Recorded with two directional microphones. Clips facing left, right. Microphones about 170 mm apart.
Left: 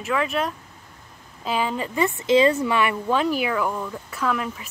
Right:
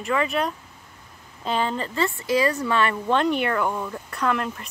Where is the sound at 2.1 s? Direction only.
20° left (ahead or behind).